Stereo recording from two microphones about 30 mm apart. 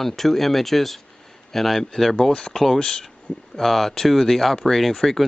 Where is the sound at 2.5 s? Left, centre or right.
Centre.